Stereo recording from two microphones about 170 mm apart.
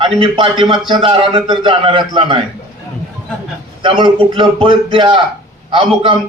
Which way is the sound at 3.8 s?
30° right (ahead or behind).